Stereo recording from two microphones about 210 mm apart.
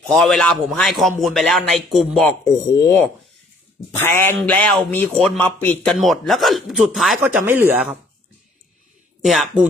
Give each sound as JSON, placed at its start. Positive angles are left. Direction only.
{"t": 0.1, "sound": "speech", "side_deg": 0}
{"t": 2.5, "sound": "speech", "side_deg": 15}
{"t": 9.2, "sound": "speech", "side_deg": 0}